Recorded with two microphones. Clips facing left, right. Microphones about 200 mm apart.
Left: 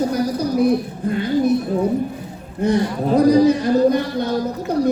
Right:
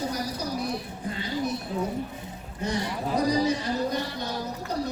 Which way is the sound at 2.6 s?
55° left (ahead or behind).